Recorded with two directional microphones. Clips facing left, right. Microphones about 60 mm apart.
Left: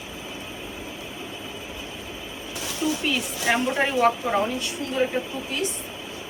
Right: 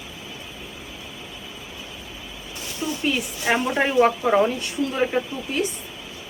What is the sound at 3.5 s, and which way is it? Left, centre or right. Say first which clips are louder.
Speech: right 1 dB; right.